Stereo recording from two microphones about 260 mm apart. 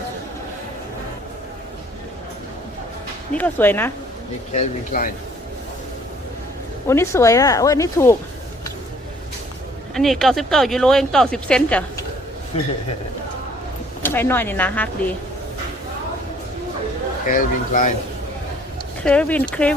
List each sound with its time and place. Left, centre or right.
3.3 s speech: centre
4.5 s speech: left
6.8 s speech: centre
9.9 s speech: centre
14.0 s speech: centre
17.2 s speech: left
19.0 s speech: centre